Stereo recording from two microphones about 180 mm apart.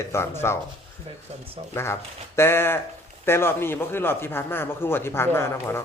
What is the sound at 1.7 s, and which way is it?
A man's voice, 15° left (ahead or behind).